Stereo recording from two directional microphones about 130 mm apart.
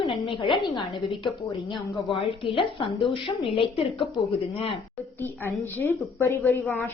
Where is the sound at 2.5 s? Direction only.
45° left (ahead or behind).